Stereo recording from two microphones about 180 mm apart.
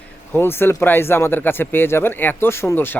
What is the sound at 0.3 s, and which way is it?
Speech, 15° left (ahead or behind).